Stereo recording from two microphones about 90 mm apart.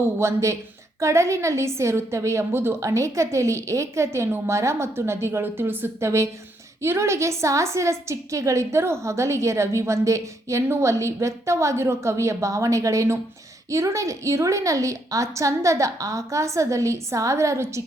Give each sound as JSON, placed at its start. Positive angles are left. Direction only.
{"t": 0.2, "sound": "a woman's voice", "side_deg": -35}